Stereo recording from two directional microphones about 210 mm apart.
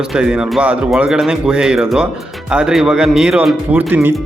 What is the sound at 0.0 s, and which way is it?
Speech, 5° right (ahead or behind).